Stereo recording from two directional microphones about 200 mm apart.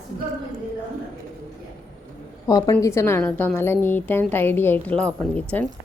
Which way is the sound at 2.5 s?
20° left (ahead or behind).